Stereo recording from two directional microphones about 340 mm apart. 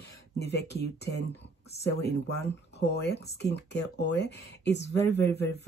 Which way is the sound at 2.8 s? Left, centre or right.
Left.